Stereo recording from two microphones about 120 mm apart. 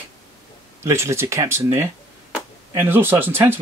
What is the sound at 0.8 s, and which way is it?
Speech, 20° right (ahead or behind).